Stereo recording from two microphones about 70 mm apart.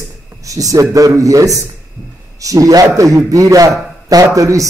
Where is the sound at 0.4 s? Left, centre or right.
Right.